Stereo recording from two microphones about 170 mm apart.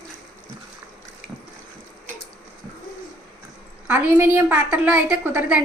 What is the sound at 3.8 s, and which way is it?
A woman's voice, 10° right (ahead or behind).